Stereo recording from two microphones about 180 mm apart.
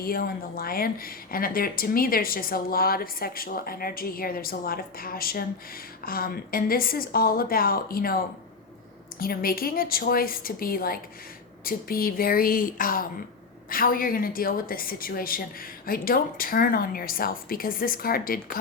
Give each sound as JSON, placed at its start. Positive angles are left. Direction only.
{"t": 0.0, "sound": "a woman's voice", "side_deg": 55}